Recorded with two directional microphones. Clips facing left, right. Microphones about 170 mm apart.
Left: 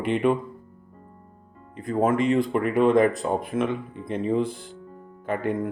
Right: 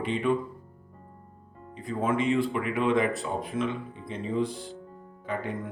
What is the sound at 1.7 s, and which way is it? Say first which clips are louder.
Speech: left 5 dB; 50° left (ahead or behind).